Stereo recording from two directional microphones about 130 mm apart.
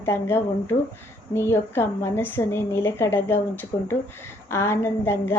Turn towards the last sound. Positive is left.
turn(degrees=20)  # may be behind; listen again after turning